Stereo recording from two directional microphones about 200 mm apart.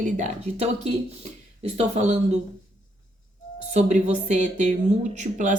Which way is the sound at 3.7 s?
35° right (ahead or behind).